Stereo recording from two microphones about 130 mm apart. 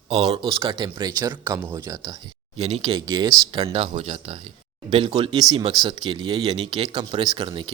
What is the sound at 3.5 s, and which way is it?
Speech, 50° right (ahead or behind).